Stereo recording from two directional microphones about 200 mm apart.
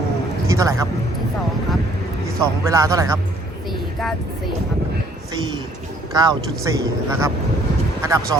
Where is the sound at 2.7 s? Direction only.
15° right (ahead or behind).